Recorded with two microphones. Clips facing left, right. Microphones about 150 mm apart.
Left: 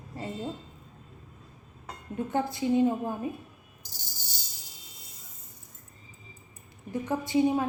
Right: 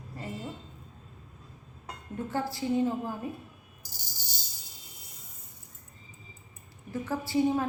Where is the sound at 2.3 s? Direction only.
20° left (ahead or behind).